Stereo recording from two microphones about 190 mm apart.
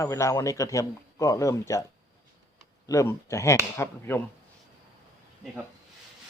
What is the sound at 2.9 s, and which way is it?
Speech, 15° left (ahead or behind).